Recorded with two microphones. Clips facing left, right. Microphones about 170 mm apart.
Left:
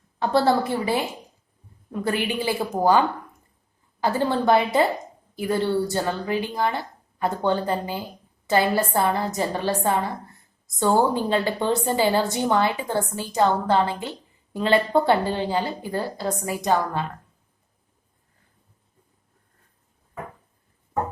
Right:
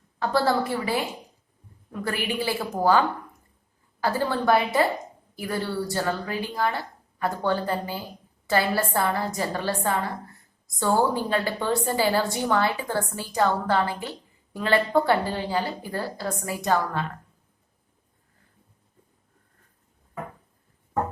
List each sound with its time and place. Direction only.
0.2 s a woman's voice: 25° left (ahead or behind)
4.0 s a woman's voice: 20° left (ahead or behind)